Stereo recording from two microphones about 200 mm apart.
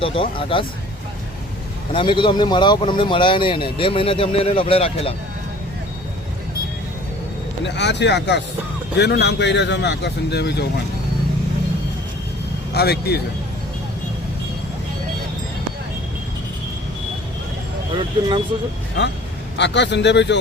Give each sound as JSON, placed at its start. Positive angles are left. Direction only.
{"t": 0.0, "sound": "speech", "side_deg": 25}
{"t": 1.9, "sound": "speech", "side_deg": 25}
{"t": 7.6, "sound": "a man's voice", "side_deg": 60}
{"t": 12.7, "sound": "speech", "side_deg": 55}
{"t": 17.9, "sound": "speech", "side_deg": -25}
{"t": 19.5, "sound": "a man's voice", "side_deg": 60}